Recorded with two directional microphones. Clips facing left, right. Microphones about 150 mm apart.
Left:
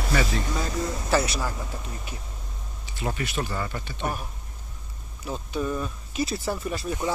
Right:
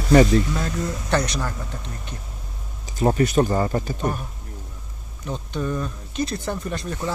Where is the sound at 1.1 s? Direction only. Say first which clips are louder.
Right 1 dB; 5° left (ahead or behind).